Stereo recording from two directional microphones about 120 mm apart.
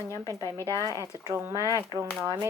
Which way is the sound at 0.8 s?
25° right (ahead or behind).